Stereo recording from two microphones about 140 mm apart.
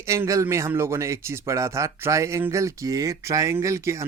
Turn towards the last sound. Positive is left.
turn(degrees=-20)  # may be behind; listen again after turning